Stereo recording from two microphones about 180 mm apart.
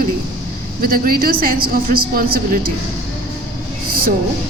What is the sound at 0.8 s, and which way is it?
A woman's voice, 55° right (ahead or behind).